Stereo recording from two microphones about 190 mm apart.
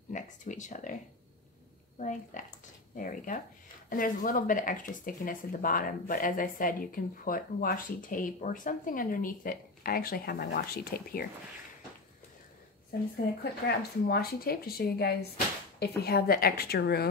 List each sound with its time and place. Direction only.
0.1 s a sound: 40° left (ahead or behind)
2.0 s speech: 40° left (ahead or behind)
13.4 s a woman's voice: 55° left (ahead or behind)